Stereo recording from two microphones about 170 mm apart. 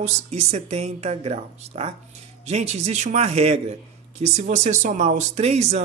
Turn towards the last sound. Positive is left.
turn(degrees=-40)  # may be behind; listen again after turning